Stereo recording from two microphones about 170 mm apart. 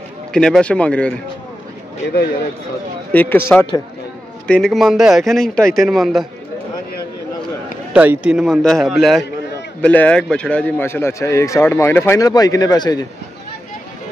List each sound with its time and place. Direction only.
0.3 s a man's voice: 5° left (ahead or behind)
3.1 s a man's voice: 10° left (ahead or behind)
4.5 s a man's voice: 5° left (ahead or behind)
7.9 s a man's voice: 10° right (ahead or behind); by 13.0 s 25° left (ahead or behind)